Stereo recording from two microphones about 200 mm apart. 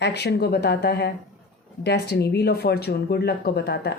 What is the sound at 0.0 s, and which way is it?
A woman's voice, 55° left (ahead or behind).